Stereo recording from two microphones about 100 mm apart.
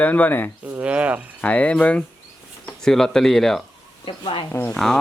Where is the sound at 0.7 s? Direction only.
10° right (ahead or behind).